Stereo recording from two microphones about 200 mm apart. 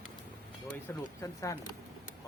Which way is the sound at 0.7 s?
15° left (ahead or behind).